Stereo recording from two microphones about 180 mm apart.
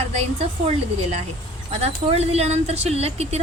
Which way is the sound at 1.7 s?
35° right (ahead or behind).